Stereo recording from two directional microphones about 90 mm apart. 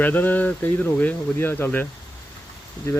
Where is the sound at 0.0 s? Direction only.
20° left (ahead or behind).